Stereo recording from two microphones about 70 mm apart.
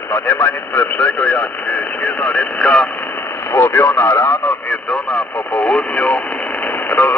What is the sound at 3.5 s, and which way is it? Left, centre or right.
A man's voice, left.